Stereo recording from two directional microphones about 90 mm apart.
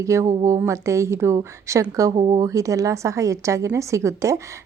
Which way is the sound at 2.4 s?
40° right (ahead or behind).